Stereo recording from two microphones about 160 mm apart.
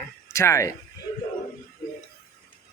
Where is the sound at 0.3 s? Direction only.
15° left (ahead or behind).